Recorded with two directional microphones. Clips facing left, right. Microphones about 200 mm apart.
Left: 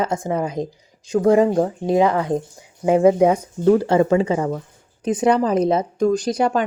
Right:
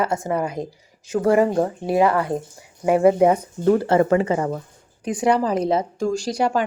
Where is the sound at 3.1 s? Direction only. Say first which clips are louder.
Left 1 dB; 5° left (ahead or behind).